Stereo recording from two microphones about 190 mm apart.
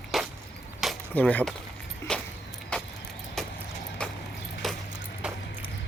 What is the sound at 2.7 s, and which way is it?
Vehicle, 5° left (ahead or behind).